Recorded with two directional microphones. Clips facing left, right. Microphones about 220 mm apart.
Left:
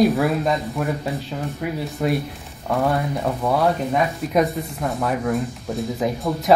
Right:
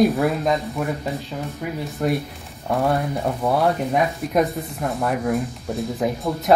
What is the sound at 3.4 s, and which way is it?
Speech, centre (ahead or behind).